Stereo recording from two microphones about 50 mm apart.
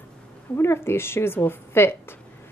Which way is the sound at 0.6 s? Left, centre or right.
Left.